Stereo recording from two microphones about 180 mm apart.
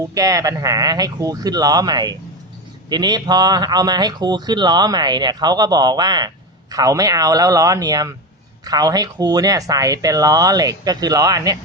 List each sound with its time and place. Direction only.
0.1 s speech: 20° right (ahead or behind)